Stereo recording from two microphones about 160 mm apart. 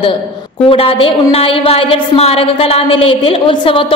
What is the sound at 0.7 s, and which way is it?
A woman's voice, 35° left (ahead or behind).